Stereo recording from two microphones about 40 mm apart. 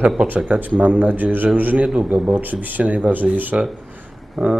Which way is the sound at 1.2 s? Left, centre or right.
Right.